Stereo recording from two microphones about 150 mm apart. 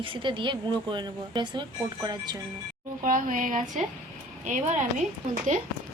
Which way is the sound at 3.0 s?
65° right (ahead or behind).